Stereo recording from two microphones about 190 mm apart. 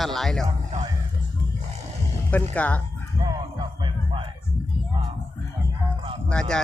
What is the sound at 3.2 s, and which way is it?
Music, 25° right (ahead or behind).